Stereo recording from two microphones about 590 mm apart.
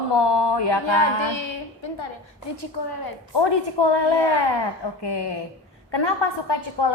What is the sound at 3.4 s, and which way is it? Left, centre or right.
A woman's voice, left.